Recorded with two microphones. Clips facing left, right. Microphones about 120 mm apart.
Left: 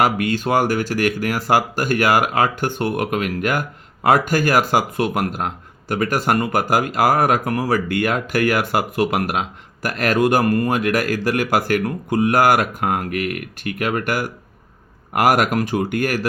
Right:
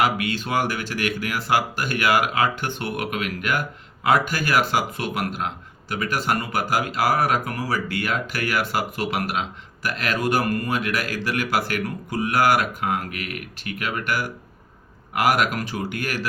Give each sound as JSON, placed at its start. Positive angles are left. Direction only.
{"t": 0.0, "sound": "speech", "side_deg": 45}